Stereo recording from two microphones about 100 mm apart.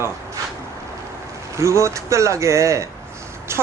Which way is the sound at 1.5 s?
30° right (ahead or behind).